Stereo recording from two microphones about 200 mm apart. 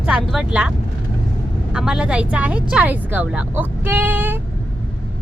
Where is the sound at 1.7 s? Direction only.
5° right (ahead or behind).